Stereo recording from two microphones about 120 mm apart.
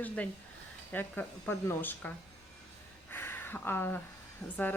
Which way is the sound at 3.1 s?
20° left (ahead or behind).